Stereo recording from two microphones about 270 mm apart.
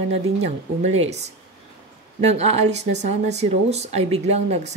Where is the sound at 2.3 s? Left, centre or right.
Right.